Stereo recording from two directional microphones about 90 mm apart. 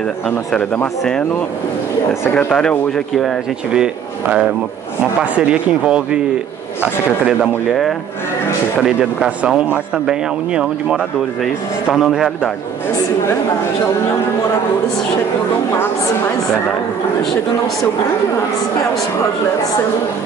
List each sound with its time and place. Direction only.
2.3 s speech: 10° left (ahead or behind)
3.7 s speech: 10° right (ahead or behind)